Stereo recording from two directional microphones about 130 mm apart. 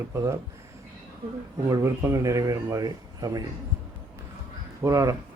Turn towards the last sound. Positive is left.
turn(degrees=-25)  # may be behind; listen again after turning